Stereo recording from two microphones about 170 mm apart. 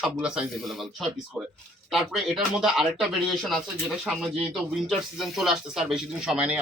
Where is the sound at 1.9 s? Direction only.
Centre (ahead or behind).